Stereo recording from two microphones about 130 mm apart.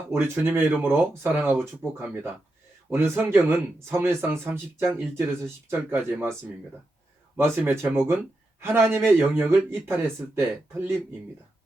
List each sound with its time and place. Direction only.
0.1 s speech: 20° right (ahead or behind)
7.3 s speech: 15° right (ahead or behind)